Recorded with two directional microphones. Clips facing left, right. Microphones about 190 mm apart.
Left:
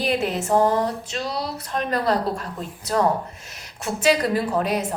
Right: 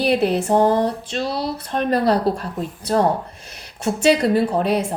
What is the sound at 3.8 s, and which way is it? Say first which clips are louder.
A woman's voice: right 4 dB; 30° right (ahead or behind).